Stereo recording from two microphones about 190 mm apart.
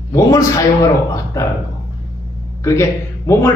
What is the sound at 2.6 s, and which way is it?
Speech, 15° left (ahead or behind).